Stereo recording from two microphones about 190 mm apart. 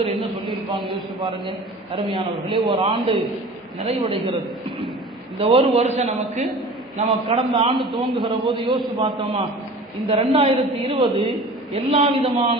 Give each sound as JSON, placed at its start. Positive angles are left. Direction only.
{"t": 0.0, "sound": "a sound", "side_deg": -25}
{"t": 1.2, "sound": "a man's voice", "side_deg": -25}
{"t": 5.4, "sound": "a man's voice", "side_deg": -30}